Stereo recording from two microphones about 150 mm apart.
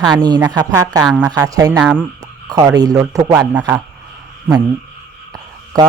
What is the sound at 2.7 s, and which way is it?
Speech, 25° right (ahead or behind).